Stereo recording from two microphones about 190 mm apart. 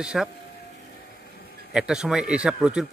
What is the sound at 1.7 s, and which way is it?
Speech, 5° right (ahead or behind).